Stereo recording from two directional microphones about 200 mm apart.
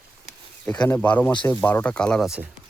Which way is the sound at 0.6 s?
5° left (ahead or behind).